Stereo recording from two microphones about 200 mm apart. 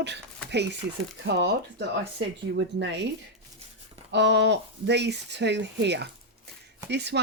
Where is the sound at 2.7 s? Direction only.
60° right (ahead or behind).